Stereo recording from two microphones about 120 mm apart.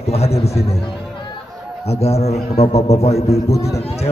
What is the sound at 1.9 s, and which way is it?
A man's voice, 60° left (ahead or behind).